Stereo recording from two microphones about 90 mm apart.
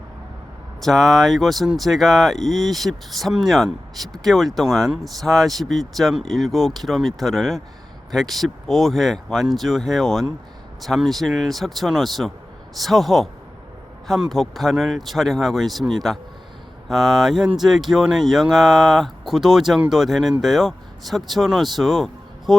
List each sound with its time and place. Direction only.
0.9 s speech: centre (ahead or behind)